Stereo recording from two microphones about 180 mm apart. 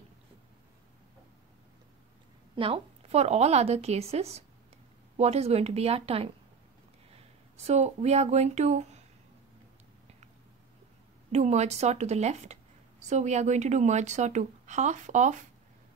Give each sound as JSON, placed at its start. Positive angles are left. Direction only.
{"t": 2.5, "sound": "speech", "side_deg": -30}
{"t": 11.3, "sound": "speech", "side_deg": -40}